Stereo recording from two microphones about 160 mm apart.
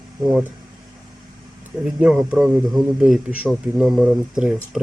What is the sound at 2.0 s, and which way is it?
Speech, 5° right (ahead or behind).